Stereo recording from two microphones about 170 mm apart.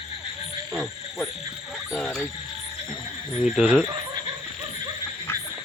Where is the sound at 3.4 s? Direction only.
5° right (ahead or behind).